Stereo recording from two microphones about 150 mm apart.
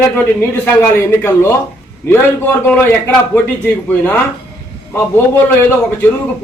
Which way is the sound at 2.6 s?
10° left (ahead or behind).